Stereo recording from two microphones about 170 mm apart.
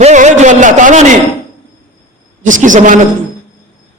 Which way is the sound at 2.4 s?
50° right (ahead or behind).